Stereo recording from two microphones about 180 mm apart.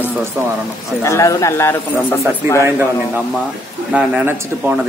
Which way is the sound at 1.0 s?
15° left (ahead or behind).